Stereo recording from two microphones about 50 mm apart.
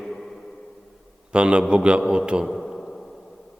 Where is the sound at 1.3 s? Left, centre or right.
Right.